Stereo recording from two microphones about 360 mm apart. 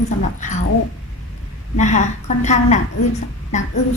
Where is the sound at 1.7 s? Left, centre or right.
Centre.